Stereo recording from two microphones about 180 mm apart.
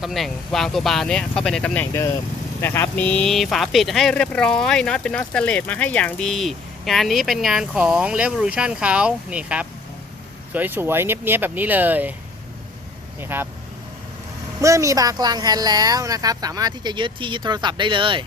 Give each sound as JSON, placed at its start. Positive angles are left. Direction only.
{"t": 0.0, "sound": "speech", "side_deg": 0}
{"t": 13.1, "sound": "speech", "side_deg": -10}
{"t": 14.6, "sound": "speech", "side_deg": -15}